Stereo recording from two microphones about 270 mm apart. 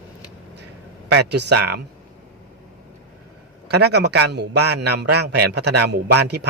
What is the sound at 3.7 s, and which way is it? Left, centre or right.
A man's voice, right.